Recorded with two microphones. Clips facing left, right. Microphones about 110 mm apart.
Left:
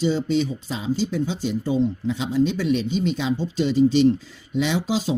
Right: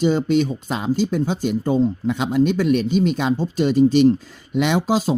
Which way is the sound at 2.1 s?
55° right (ahead or behind).